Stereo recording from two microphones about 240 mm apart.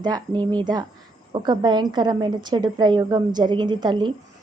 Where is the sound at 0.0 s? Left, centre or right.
Centre.